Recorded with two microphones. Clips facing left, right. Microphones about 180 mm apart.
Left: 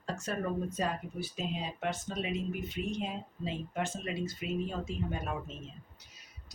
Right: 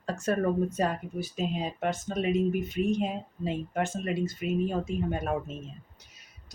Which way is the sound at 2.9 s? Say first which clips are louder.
Right 7 dB; 50° right (ahead or behind).